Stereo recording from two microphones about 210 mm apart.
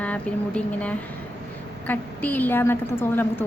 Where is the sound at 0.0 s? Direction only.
5° left (ahead or behind).